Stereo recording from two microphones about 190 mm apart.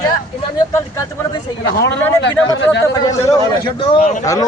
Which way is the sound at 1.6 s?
70° left (ahead or behind).